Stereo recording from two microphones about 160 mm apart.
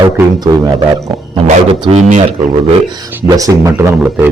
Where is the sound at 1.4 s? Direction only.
40° right (ahead or behind).